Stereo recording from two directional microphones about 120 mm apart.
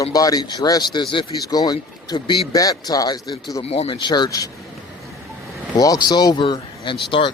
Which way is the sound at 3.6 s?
55° left (ahead or behind).